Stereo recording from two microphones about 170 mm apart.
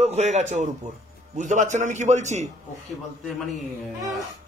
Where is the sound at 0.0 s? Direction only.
40° right (ahead or behind).